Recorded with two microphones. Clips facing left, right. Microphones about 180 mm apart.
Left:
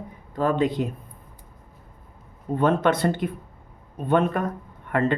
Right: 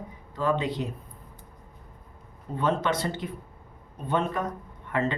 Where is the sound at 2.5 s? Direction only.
55° left (ahead or behind).